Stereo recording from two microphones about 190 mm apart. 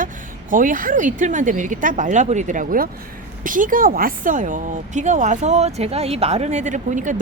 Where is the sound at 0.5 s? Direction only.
45° right (ahead or behind).